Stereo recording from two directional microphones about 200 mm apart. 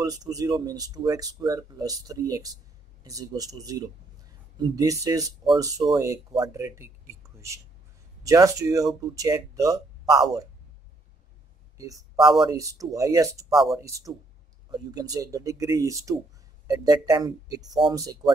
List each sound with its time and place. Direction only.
0.0 s speech: 20° right (ahead or behind)
11.7 s a sound: 15° right (ahead or behind)
12.4 s speech: 15° right (ahead or behind)